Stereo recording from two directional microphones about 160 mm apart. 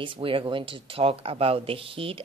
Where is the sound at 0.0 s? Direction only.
35° right (ahead or behind).